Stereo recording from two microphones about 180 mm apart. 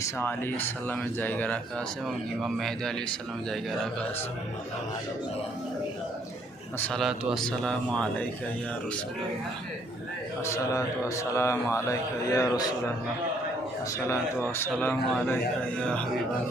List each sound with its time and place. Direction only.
0.0 s a man's voice: 10° left (ahead or behind)
6.7 s a man's voice: 5° left (ahead or behind)
10.4 s a man's voice: 15° left (ahead or behind)
14.1 s a man's voice: 15° left (ahead or behind)